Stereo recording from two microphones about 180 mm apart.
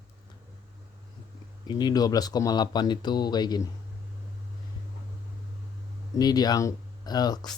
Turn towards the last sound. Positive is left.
turn(degrees=20)  # may be behind; listen again after turning